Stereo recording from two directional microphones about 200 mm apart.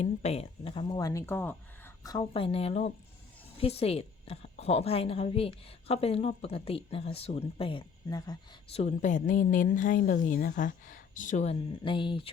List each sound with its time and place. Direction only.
0.0 s a woman's voice: 35° left (ahead or behind)
8.7 s a woman's voice: 35° left (ahead or behind)
11.8 s a woman's voice: 25° left (ahead or behind)